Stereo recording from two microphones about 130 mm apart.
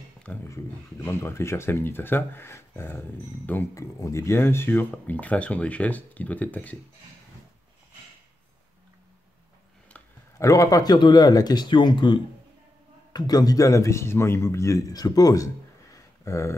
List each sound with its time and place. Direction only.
0.2 s a sound: 10° left (ahead or behind)
0.5 s speech: 20° left (ahead or behind)
10.3 s speech: 25° left (ahead or behind)